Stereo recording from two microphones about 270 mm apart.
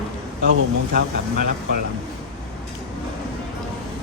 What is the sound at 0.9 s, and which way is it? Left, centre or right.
Speech, right.